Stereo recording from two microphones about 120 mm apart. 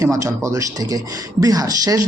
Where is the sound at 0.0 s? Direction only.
25° right (ahead or behind).